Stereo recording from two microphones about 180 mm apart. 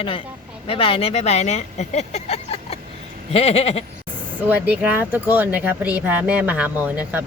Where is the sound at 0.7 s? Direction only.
30° left (ahead or behind).